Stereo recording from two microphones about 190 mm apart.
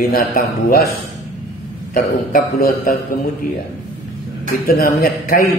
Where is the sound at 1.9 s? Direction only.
50° left (ahead or behind).